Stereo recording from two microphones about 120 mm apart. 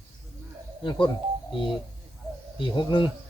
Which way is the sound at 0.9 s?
40° left (ahead or behind).